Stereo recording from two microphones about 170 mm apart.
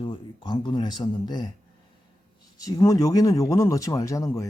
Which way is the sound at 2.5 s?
20° left (ahead or behind).